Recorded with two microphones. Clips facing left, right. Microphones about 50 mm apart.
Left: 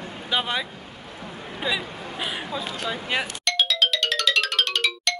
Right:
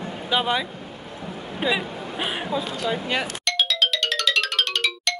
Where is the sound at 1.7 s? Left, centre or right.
Right.